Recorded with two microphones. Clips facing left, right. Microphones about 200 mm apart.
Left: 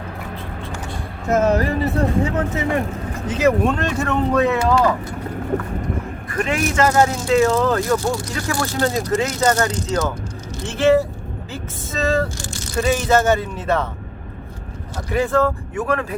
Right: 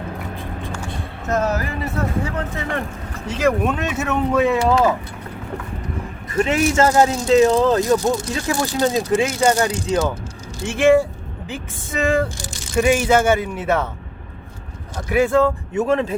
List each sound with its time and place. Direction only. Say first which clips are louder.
1.3 s speech: left 4 dB; 25° left (ahead or behind)
2.2 s speech: left 4 dB; 25° left (ahead or behind)
3.2 s speech: left 2 dB; 5° left (ahead or behind)
3.6 s speech: left 2 dB; 5° right (ahead or behind)
6.3 s speech: right 3 dB; 25° right (ahead or behind)
15.1 s speech: right 2 dB; 10° right (ahead or behind)